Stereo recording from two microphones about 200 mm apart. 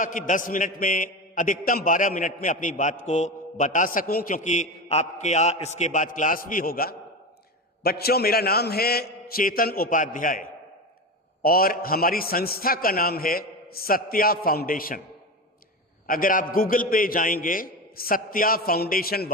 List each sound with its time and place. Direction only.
0.0 s a man's voice: 40° left (ahead or behind)
11.4 s a man's voice: 45° left (ahead or behind)
16.0 s a man's voice: 45° left (ahead or behind)